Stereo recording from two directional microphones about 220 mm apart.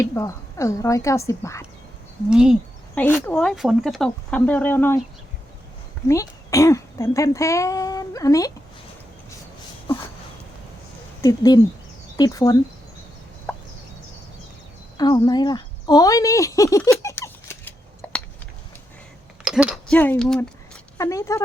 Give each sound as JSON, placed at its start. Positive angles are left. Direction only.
{"t": 0.0, "sound": "speech", "side_deg": 15}
{"t": 2.3, "sound": "speech", "side_deg": -5}
{"t": 2.9, "sound": "speech", "side_deg": 10}
{"t": 6.1, "sound": "speech", "side_deg": 15}
{"t": 11.2, "sound": "speech", "side_deg": 15}
{"t": 14.9, "sound": "a sound", "side_deg": 20}
{"t": 19.5, "sound": "speech", "side_deg": -5}
{"t": 21.0, "sound": "speech", "side_deg": 15}